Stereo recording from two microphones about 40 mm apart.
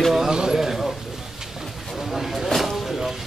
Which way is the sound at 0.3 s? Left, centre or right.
Centre.